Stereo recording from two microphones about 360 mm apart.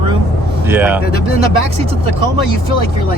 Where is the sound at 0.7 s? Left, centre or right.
Centre.